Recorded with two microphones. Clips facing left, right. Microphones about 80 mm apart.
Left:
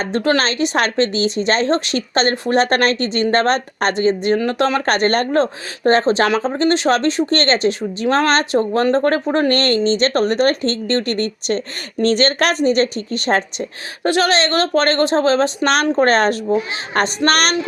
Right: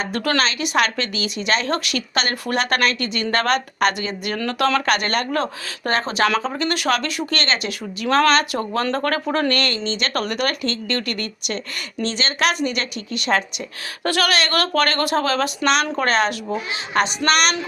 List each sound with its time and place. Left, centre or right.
0.0 s speech: left
14.0 s a woman's voice: left
15.6 s speech: left